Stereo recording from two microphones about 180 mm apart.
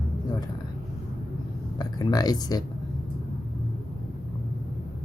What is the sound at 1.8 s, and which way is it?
Speech, 20° left (ahead or behind).